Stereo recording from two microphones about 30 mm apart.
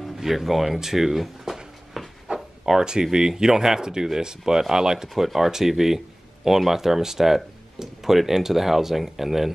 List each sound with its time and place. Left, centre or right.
0.2 s speech: centre
2.2 s a sound: right
2.8 s speech: right
5.1 s speech: centre